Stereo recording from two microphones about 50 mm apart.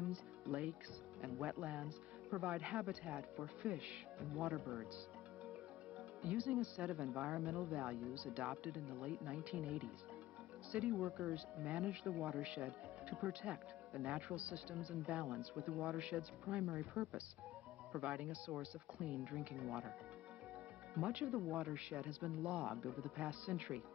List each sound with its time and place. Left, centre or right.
0.0 s music: right
1.2 s speech: right
6.2 s speech: right
18.0 s speech: right
20.9 s speech: right